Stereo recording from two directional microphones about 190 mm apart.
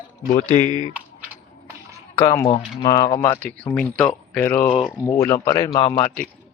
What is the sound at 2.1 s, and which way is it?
Speech, 15° left (ahead or behind).